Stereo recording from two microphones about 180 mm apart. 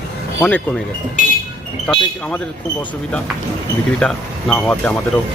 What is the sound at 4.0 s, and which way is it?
Speech, 5° left (ahead or behind).